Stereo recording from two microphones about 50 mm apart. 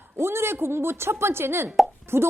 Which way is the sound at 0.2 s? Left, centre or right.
Right.